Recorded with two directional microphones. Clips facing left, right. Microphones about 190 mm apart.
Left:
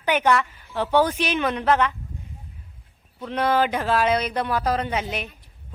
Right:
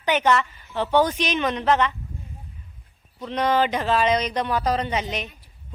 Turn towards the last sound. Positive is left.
turn(degrees=10)  # may be behind; listen again after turning